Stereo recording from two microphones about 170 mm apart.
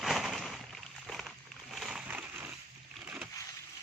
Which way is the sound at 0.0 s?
Centre (ahead or behind).